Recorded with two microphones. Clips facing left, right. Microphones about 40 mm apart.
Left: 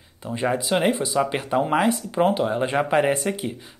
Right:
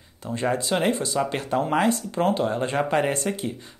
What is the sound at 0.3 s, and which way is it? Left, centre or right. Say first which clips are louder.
Speech: left 2 dB; centre.